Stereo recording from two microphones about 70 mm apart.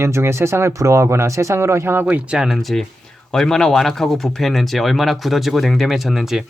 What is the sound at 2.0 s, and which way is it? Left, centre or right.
Speech, right.